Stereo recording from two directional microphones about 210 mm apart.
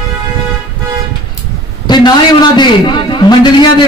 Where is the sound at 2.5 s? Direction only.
20° left (ahead or behind).